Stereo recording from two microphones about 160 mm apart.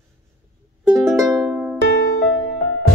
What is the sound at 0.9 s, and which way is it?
Music, centre (ahead or behind).